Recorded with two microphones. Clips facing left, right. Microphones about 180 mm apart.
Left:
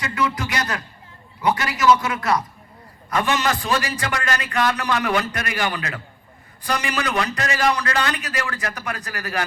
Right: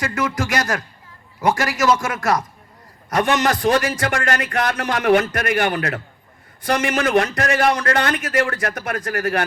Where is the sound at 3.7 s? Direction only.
45° right (ahead or behind).